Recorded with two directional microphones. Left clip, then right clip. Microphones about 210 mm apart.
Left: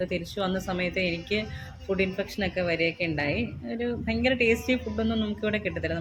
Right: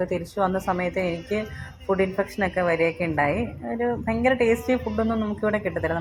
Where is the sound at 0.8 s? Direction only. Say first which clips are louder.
Right 2 dB; 35° right (ahead or behind).